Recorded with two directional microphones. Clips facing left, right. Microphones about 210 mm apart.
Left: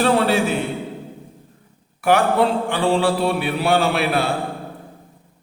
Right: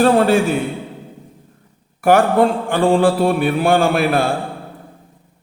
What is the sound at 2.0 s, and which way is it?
A man's voice, 45° right (ahead or behind).